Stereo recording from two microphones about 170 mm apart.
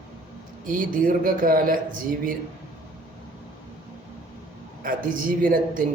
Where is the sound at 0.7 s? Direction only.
55° right (ahead or behind).